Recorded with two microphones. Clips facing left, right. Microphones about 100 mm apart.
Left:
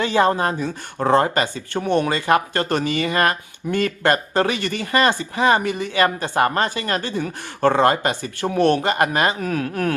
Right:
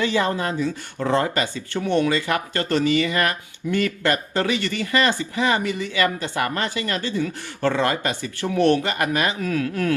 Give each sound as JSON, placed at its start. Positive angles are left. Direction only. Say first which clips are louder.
{"t": 0.1, "sound": "speech", "louder": "left 4 dB", "side_deg": 45}
{"t": 9.0, "sound": "speech", "louder": "left 3 dB", "side_deg": 35}